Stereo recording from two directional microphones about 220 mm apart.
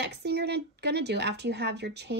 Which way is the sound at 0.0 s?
50° right (ahead or behind).